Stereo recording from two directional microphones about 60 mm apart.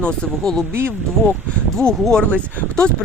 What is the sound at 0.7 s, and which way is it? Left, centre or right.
Speech, right.